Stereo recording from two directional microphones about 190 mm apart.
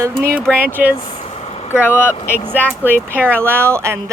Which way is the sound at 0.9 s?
35° left (ahead or behind).